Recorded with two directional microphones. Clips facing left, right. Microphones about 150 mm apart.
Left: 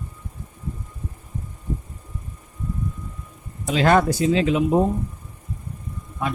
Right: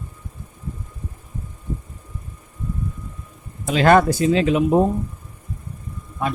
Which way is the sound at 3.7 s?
60° right (ahead or behind).